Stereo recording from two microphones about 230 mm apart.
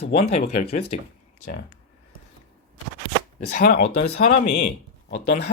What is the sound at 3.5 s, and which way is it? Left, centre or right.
Speech, left.